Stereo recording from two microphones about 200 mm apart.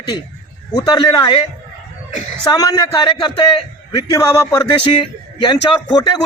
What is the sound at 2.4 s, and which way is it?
A man's voice, 20° left (ahead or behind).